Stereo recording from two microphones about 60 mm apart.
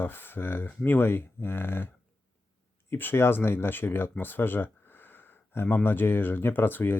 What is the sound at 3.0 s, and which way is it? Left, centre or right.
Speech, left.